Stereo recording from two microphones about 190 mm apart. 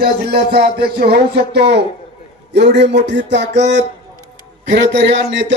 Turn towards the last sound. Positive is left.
turn(degrees=-70)  # may be behind; listen again after turning